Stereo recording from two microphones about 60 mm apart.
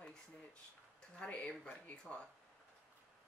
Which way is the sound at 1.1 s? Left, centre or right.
Left.